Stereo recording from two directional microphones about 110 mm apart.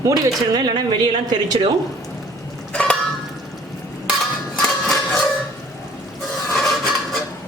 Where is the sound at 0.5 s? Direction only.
45° right (ahead or behind).